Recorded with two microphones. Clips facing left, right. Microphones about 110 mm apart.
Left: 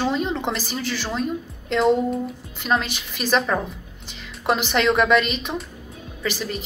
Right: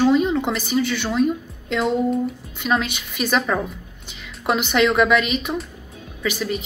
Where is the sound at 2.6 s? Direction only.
Centre (ahead or behind).